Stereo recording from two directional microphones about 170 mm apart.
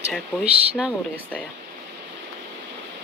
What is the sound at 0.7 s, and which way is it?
Speech, 5° right (ahead or behind).